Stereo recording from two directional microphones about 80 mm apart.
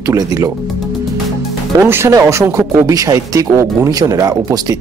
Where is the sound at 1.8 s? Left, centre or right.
Right.